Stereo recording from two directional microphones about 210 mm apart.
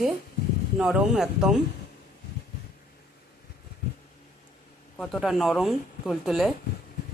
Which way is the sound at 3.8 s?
45° left (ahead or behind).